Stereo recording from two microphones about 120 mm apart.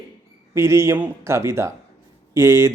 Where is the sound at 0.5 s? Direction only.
20° right (ahead or behind).